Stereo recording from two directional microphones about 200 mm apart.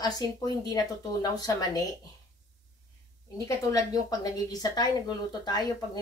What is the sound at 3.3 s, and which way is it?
A woman's voice, 15° left (ahead or behind).